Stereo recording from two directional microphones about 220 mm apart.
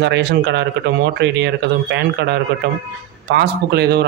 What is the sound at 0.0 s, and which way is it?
Speech, 50° right (ahead or behind).